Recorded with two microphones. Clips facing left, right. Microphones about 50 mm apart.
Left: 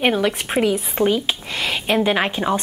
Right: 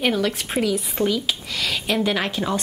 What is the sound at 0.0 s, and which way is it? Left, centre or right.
A woman's voice, left.